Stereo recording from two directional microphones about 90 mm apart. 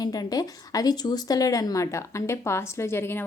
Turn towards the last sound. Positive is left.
turn(degrees=25)  # may be behind; listen again after turning